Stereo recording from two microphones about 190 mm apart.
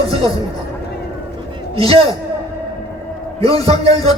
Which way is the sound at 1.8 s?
30° right (ahead or behind).